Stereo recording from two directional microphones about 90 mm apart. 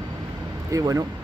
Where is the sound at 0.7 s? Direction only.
40° right (ahead or behind).